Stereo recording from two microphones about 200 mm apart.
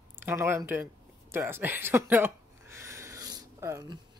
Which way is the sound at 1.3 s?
10° right (ahead or behind).